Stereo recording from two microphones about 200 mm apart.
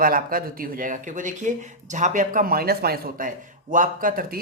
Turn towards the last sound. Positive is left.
turn(degrees=-45)  # may be behind; listen again after turning